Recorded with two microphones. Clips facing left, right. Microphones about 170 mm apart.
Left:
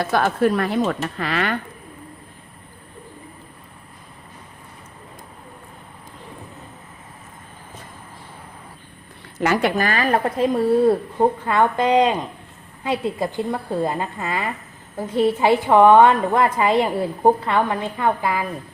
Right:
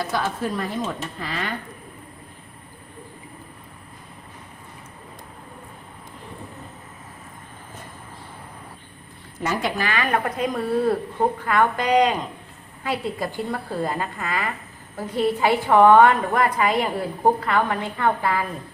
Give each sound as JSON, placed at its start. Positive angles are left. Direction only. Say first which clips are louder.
{"t": 0.0, "sound": "speech", "louder": "left 7 dB", "side_deg": 60}
{"t": 9.4, "sound": "a woman's voice", "louder": "left 6 dB", "side_deg": 75}
{"t": 9.8, "sound": "a woman's voice", "louder": "left 3 dB", "side_deg": 35}